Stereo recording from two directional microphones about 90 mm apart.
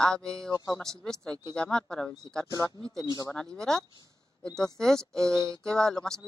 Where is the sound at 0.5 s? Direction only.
45° left (ahead or behind).